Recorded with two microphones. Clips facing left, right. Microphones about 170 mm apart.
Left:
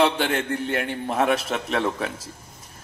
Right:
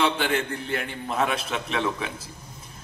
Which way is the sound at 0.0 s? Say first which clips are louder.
Left 3 dB; 45° left (ahead or behind).